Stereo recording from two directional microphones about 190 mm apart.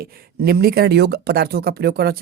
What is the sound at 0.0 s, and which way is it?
Speech, 55° right (ahead or behind).